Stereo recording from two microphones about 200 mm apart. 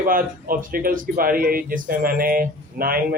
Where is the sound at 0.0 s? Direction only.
45° right (ahead or behind).